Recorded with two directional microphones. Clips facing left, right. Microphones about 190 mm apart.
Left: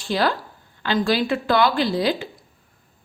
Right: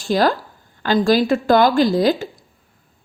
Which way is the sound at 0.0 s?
45° right (ahead or behind).